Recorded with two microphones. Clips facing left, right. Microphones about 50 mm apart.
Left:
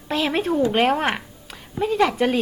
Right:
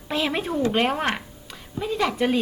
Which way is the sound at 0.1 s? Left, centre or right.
Centre.